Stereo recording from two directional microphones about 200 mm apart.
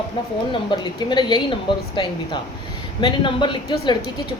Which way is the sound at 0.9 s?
20° left (ahead or behind).